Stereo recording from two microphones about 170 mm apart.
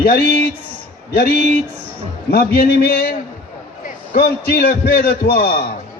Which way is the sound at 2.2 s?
65° left (ahead or behind).